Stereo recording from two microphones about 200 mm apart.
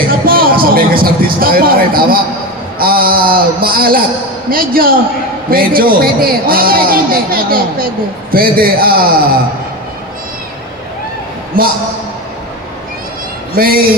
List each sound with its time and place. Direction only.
0.2 s a sound: 45° right (ahead or behind)
2.8 s a man's voice: 45° right (ahead or behind)
11.6 s a man's voice: 45° right (ahead or behind)
13.6 s a man's voice: 45° right (ahead or behind)